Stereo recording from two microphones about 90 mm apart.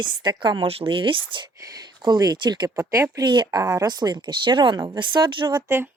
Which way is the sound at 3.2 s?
60° right (ahead or behind).